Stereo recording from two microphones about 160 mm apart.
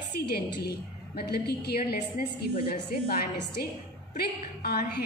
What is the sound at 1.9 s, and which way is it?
A woman's voice, 65° left (ahead or behind).